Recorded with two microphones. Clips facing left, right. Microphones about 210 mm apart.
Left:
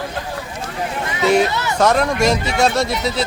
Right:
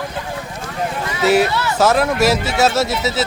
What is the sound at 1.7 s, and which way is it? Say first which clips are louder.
Speech: even; 5° right (ahead or behind).